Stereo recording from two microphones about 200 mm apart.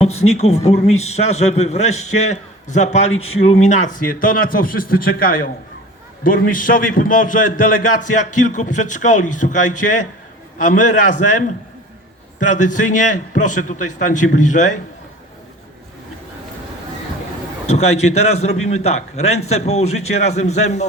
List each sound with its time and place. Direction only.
0.0 s a man's voice: 30° left (ahead or behind)
3.1 s a man's voice: 90° left
3.3 s a man's voice: 30° left (ahead or behind)
12.4 s a man's voice: 40° left (ahead or behind)
17.7 s a man's voice: 35° left (ahead or behind)